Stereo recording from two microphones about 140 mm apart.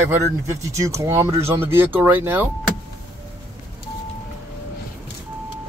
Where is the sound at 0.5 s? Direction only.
20° right (ahead or behind).